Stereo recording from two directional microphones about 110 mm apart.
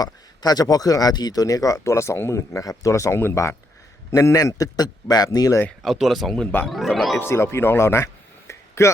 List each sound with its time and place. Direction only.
0.0 s speech: 35° left (ahead or behind)
5.8 s speech: centre (ahead or behind)
7.2 s speech: 25° left (ahead or behind)